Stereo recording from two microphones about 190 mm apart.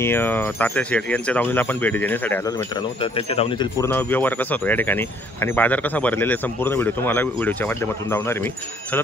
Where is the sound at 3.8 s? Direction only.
10° left (ahead or behind).